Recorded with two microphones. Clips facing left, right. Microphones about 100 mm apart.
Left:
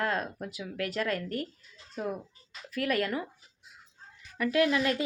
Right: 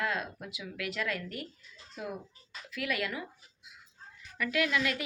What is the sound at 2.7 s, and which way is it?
Speech, 40° left (ahead or behind).